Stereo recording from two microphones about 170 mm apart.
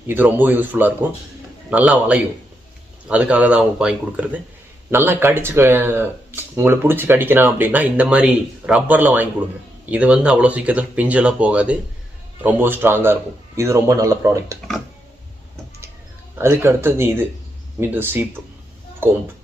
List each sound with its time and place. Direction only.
0.1 s speech: 10° right (ahead or behind)
16.3 s speech: 15° right (ahead or behind)